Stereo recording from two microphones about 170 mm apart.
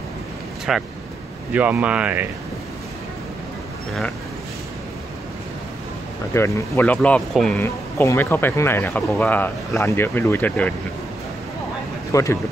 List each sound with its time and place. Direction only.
0.7 s speech: centre (ahead or behind)
6.3 s speech: 15° left (ahead or behind)
7.5 s speech: 15° left (ahead or behind)
12.1 s speech: 20° left (ahead or behind)